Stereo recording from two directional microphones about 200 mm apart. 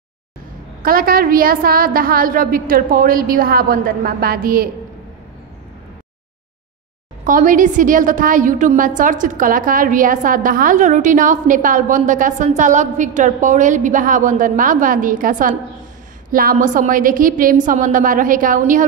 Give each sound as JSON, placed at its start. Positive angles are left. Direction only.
{"t": 0.8, "sound": "a woman's voice", "side_deg": -45}
{"t": 7.2, "sound": "a woman's voice", "side_deg": -40}